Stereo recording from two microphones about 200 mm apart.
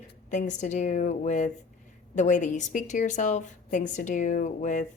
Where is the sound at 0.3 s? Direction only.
35° left (ahead or behind).